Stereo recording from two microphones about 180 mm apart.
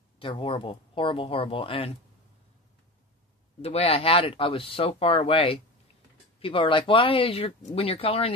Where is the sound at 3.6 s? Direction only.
35° left (ahead or behind).